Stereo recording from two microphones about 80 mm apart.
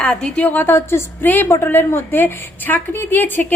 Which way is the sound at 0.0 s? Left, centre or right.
Centre.